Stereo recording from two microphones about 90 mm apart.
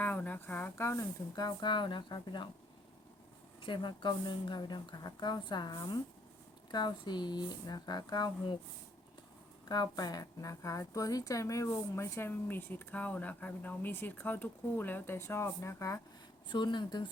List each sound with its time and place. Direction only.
0.0 s speech: 20° left (ahead or behind)
1.4 s a woman's voice: 55° left (ahead or behind)
3.6 s speech: 60° left (ahead or behind)
9.6 s a woman's voice: 50° left (ahead or behind); by 16.0 s 35° left (ahead or behind)
16.5 s a woman's voice: 60° left (ahead or behind)